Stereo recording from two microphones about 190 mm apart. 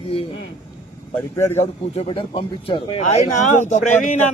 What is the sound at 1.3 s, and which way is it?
Speech, 15° left (ahead or behind).